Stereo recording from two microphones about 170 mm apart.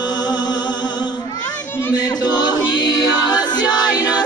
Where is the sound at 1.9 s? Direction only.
25° left (ahead or behind).